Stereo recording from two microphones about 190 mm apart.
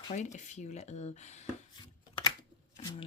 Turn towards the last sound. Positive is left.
turn(degrees=20)  # may be behind; listen again after turning